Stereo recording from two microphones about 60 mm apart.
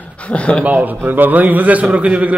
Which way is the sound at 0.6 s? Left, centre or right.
Right.